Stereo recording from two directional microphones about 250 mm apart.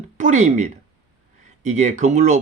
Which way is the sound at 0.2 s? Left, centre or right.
Right.